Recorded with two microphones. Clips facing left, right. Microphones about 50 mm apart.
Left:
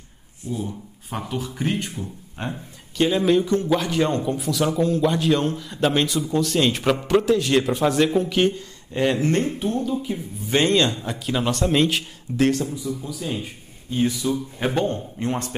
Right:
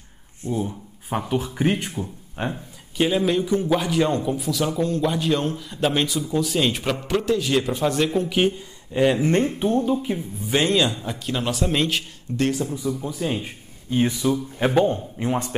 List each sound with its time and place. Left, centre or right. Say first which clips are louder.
1.1 s a man's voice: right 4 dB; centre
3.9 s a man's voice: even; centre
8.3 s speech: left 1 dB; centre
9.3 s a man's voice: right 2 dB; right
10.5 s a man's voice: left 1 dB; centre
12.6 s a man's voice: right 2 dB; right
14.3 s speech: right 3 dB; centre